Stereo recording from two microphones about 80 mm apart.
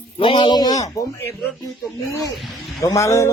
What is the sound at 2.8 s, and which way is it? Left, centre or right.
Speech, left.